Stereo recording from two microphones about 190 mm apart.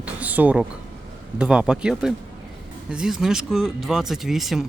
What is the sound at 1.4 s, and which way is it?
Speech, 5° right (ahead or behind).